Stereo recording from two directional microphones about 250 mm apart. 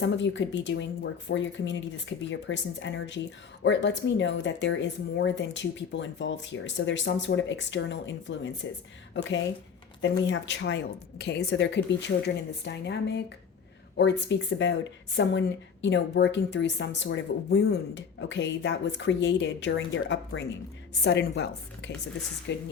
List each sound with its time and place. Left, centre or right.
0.0 s speech: left
10.0 s speech: left